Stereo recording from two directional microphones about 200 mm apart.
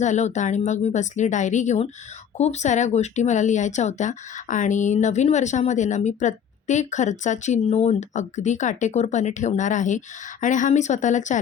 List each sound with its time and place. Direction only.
0.0 s speech: 35° left (ahead or behind)